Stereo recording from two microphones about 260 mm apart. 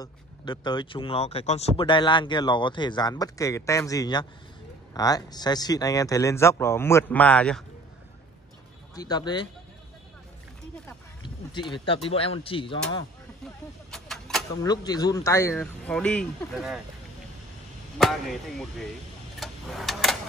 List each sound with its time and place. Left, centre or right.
0.0 s speech: centre
8.9 s speech: centre
10.9 s speech: centre
13.8 s a sound: centre
14.6 s speech: centre
17.9 s speech: centre
19.4 s clock: centre